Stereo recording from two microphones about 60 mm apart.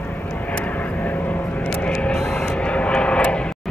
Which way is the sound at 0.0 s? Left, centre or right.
Left.